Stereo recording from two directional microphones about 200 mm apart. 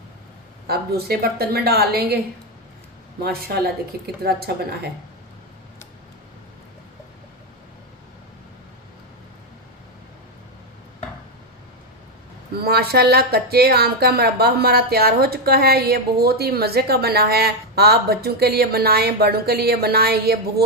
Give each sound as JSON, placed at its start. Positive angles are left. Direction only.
{"t": 0.7, "sound": "speech", "side_deg": -50}
{"t": 3.2, "sound": "speech", "side_deg": -50}
{"t": 12.5, "sound": "speech", "side_deg": -50}